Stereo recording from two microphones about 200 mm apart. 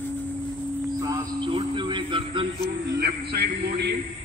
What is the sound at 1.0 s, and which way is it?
A man's voice, 20° right (ahead or behind).